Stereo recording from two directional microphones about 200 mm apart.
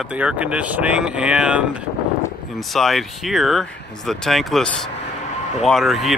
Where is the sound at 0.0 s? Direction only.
5° right (ahead or behind).